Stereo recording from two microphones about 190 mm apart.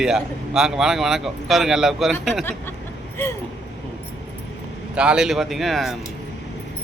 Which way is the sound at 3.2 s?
10° left (ahead or behind).